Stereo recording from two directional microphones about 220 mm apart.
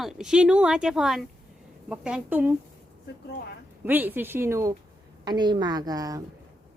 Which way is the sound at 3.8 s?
10° right (ahead or behind).